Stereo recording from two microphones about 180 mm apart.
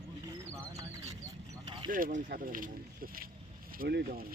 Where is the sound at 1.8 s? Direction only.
50° right (ahead or behind).